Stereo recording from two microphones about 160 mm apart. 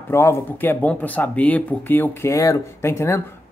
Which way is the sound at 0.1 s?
15° left (ahead or behind).